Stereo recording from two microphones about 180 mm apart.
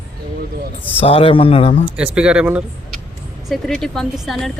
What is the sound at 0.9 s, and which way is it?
Speech, 35° left (ahead or behind).